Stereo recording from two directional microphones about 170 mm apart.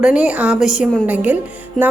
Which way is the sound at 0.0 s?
5° right (ahead or behind).